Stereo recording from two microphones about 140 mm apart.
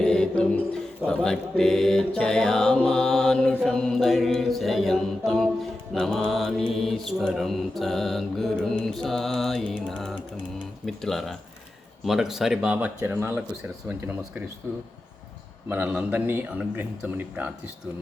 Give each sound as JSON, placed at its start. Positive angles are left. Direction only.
{"t": 0.0, "sound": "mantra", "side_deg": 5}
{"t": 13.0, "sound": "speech", "side_deg": -20}
{"t": 15.7, "sound": "speech", "side_deg": -10}